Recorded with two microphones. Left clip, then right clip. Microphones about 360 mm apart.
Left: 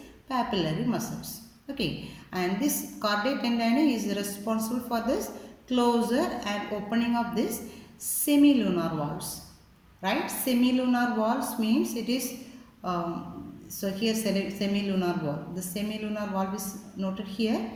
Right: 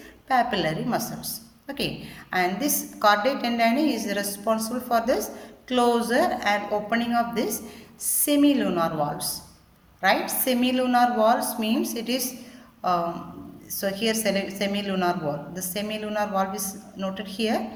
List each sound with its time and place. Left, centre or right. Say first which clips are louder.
0.3 s a woman's voice: right 6 dB; right
13.7 s a woman's voice: right 4 dB; right